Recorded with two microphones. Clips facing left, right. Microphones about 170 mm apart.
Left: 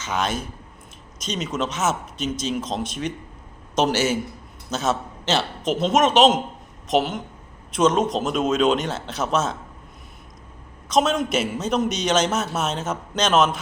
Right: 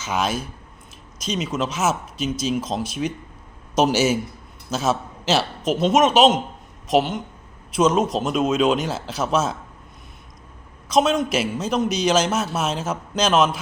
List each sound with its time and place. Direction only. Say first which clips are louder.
0.0 s a man's voice: right 1 dB; 10° right (ahead or behind)
10.8 s a man's voice: right 2 dB; centre (ahead or behind)